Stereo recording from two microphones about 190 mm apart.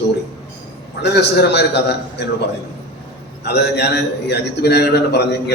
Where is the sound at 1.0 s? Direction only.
60° left (ahead or behind).